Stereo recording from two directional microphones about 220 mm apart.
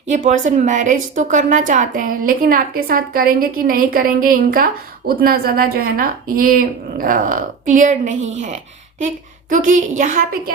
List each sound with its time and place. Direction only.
0.1 s speech: 35° right (ahead or behind)